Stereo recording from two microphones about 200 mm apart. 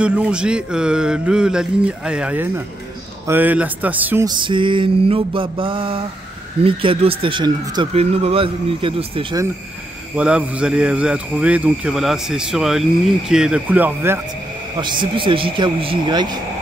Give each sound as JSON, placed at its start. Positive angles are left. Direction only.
{"t": 0.0, "sound": "speech", "side_deg": -5}
{"t": 4.4, "sound": "speech", "side_deg": -25}
{"t": 10.1, "sound": "speech", "side_deg": -5}
{"t": 14.8, "sound": "speech", "side_deg": -25}